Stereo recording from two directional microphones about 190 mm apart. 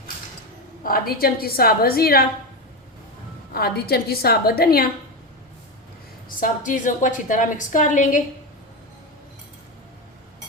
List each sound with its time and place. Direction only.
0.9 s a woman's voice: 50° left (ahead or behind)
3.5 s a woman's voice: 55° left (ahead or behind)
6.2 s a woman's voice: 45° left (ahead or behind)